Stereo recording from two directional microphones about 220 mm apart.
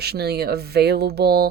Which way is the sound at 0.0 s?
45° right (ahead or behind).